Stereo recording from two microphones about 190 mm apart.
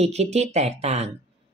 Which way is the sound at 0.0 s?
35° right (ahead or behind).